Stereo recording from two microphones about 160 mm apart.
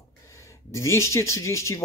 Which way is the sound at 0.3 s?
15° left (ahead or behind).